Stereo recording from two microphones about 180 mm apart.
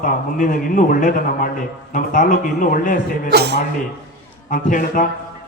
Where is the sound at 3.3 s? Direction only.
65° right (ahead or behind).